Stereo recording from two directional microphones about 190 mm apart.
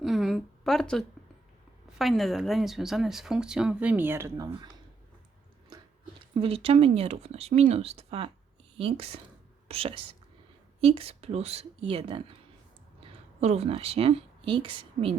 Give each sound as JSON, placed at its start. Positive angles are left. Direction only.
{"t": 0.0, "sound": "a sound", "side_deg": 0}
{"t": 2.0, "sound": "speech", "side_deg": 0}
{"t": 6.3, "sound": "speech", "side_deg": -30}